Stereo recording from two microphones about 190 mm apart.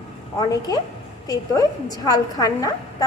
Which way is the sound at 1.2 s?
20° left (ahead or behind).